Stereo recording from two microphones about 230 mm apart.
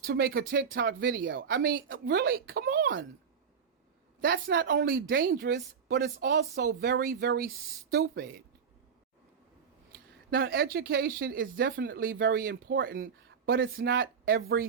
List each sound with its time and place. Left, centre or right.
0.0 s speech: right
4.2 s speech: right
9.9 s speech: right